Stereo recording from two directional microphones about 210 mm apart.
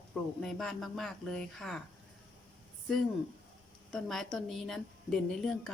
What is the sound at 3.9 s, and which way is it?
A woman's voice, centre (ahead or behind).